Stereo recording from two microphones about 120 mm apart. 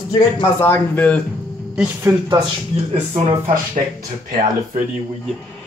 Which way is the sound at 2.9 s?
65° right (ahead or behind).